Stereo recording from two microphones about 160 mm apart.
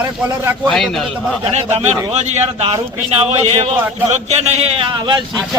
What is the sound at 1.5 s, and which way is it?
A man's voice, 45° right (ahead or behind).